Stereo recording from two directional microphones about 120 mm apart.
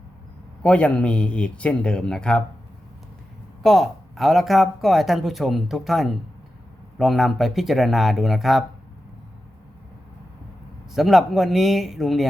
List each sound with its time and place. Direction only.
0.6 s speech: 10° left (ahead or behind)
3.6 s speech: centre (ahead or behind)
10.9 s speech: centre (ahead or behind)